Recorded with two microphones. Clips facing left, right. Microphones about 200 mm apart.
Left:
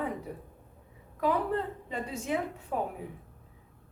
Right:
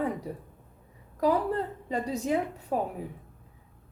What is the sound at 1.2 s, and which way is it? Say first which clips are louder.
A woman's voice: right 3 dB; 40° right (ahead or behind).